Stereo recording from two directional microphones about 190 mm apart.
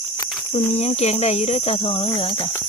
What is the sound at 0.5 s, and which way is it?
Cricket, 35° left (ahead or behind).